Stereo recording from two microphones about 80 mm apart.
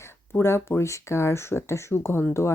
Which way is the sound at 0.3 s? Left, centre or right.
Left.